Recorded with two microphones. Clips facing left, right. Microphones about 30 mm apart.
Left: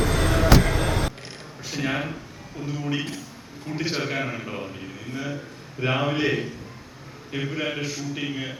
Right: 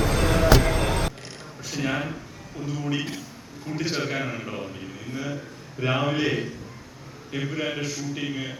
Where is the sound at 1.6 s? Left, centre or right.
Centre.